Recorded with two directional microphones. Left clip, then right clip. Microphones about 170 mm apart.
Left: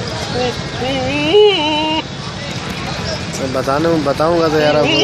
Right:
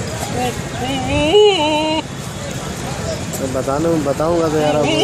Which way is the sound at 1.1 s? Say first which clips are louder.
Even; 55° right (ahead or behind).